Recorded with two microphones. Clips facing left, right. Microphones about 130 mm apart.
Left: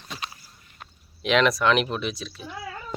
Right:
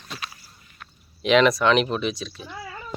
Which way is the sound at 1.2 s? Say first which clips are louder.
Right 3 dB; centre (ahead or behind).